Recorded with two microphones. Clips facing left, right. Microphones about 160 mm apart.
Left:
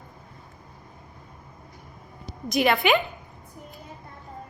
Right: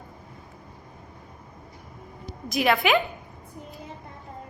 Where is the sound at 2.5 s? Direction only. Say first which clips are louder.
Left 1 dB; centre (ahead or behind).